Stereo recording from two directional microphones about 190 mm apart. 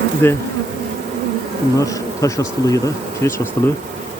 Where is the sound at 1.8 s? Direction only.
15° left (ahead or behind).